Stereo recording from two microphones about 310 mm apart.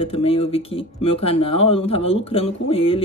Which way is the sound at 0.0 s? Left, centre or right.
Centre.